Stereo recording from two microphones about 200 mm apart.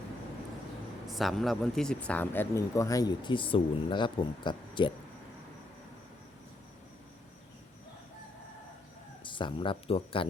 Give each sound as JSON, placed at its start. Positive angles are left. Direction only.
{"t": 1.1, "sound": "speech", "side_deg": 0}
{"t": 9.2, "sound": "speech", "side_deg": 25}